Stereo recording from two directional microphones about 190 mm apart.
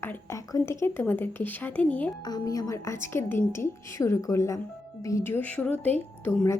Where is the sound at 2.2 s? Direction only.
20° left (ahead or behind).